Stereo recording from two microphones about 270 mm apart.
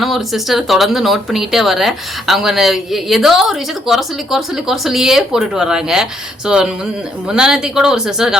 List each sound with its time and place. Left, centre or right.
0.0 s speech: centre